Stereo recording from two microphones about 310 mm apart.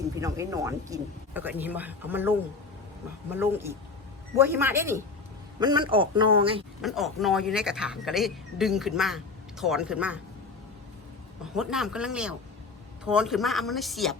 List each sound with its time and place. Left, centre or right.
0.2 s speech: centre
3.3 s speech: centre
6.8 s speech: centre
11.5 s speech: centre